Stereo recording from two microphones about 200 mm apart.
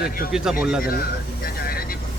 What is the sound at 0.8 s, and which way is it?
Speech, 50° left (ahead or behind).